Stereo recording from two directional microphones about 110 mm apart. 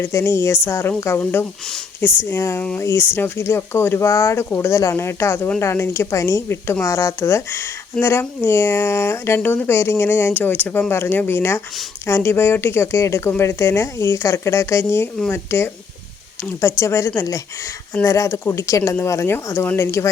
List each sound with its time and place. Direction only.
0.0 s speech: 25° left (ahead or behind)